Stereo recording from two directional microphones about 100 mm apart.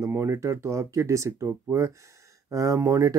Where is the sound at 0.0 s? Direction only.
30° right (ahead or behind).